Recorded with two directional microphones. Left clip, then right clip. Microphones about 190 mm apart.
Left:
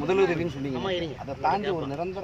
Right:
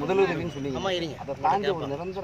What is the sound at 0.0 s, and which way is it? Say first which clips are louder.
Speech: even; 40° left (ahead or behind).